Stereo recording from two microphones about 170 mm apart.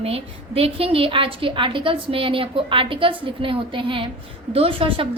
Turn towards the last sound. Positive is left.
turn(degrees=-30)  # may be behind; listen again after turning